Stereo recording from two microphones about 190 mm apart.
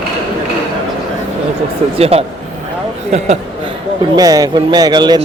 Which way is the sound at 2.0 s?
30° right (ahead or behind).